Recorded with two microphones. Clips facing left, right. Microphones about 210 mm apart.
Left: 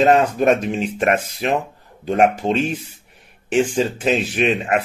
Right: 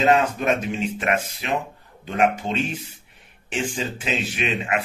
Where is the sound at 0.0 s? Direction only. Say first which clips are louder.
Left 5 dB; 45° left (ahead or behind).